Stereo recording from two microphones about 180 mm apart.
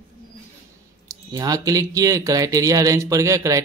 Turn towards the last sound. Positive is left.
turn(degrees=-15)  # may be behind; listen again after turning